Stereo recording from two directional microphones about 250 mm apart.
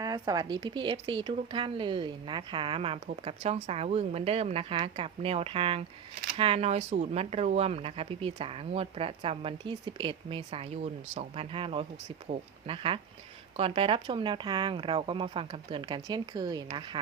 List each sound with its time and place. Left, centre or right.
0.0 s speech: centre